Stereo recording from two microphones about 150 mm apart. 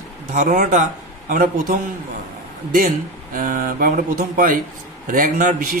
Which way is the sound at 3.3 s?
65° right (ahead or behind).